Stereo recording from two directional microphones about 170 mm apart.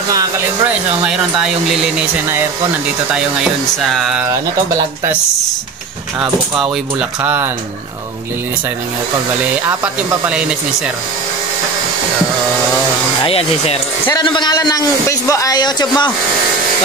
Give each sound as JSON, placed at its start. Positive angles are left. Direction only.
{"t": 2.0, "sound": "speech", "side_deg": -10}
{"t": 3.9, "sound": "speech", "side_deg": 0}
{"t": 6.5, "sound": "speech", "side_deg": -5}
{"t": 13.2, "sound": "a man's voice", "side_deg": 35}